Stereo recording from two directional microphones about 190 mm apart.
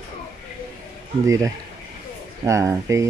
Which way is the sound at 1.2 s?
15° right (ahead or behind).